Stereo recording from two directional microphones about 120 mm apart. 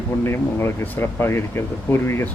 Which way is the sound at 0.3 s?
20° left (ahead or behind).